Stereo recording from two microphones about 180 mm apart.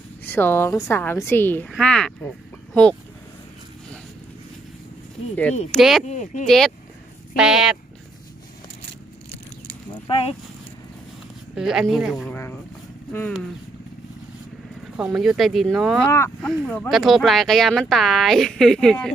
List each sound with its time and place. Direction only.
0.3 s a woman's voice: 10° left (ahead or behind)
5.7 s speech: centre (ahead or behind)
6.1 s speech: 40° left (ahead or behind)
6.4 s speech: centre (ahead or behind)
10.1 s speech: 30° left (ahead or behind)
11.5 s speech: 5° right (ahead or behind)
12.3 s vehicle: 10° left (ahead or behind)
14.9 s speech: 5° right (ahead or behind)
16.0 s a woman's voice: 15° left (ahead or behind)